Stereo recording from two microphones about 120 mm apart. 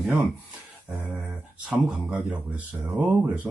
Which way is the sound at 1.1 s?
Centre (ahead or behind).